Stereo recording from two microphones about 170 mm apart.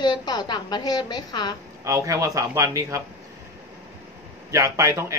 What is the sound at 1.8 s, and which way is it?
A man's voice, 20° right (ahead or behind).